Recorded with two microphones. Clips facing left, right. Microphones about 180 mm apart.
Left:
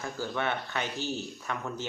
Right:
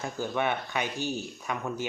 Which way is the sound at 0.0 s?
15° right (ahead or behind).